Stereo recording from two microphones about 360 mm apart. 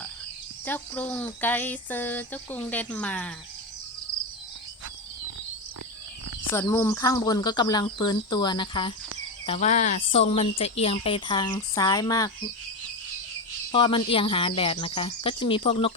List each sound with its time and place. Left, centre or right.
0.6 s speech: centre
6.5 s speech: centre
13.7 s speech: centre